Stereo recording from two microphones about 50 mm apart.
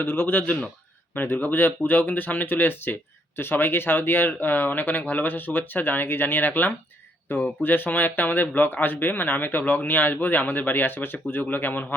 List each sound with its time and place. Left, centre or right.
0.0 s speech: left